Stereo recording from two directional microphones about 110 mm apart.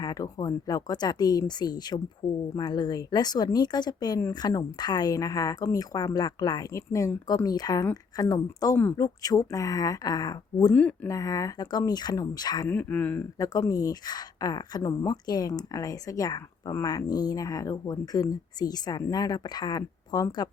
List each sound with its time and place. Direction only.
0.0 s speech: 35° left (ahead or behind)
10.7 s speech: 10° left (ahead or behind)
11.1 s speech: 30° left (ahead or behind)
12.6 s speech: 15° left (ahead or behind)
13.4 s speech: 30° left (ahead or behind)